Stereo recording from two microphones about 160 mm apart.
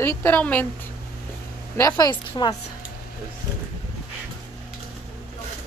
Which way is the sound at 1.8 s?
20° left (ahead or behind).